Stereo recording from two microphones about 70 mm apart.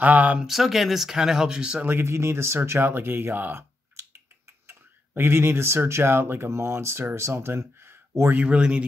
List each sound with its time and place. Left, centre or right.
0.0 s speech: right
0.4 s speech: centre
1.9 s speech: right; by 8.8 s centre